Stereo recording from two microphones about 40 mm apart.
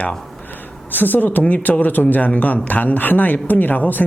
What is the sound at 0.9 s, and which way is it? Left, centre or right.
A man's voice, left.